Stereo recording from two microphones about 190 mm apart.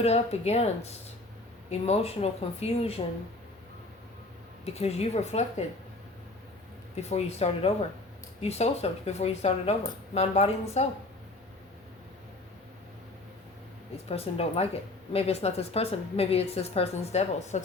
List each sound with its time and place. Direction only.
0.0 s speech: 35° left (ahead or behind)
4.6 s speech: 35° left (ahead or behind)
6.9 s speech: 35° left (ahead or behind)
14.1 s speech: 30° left (ahead or behind)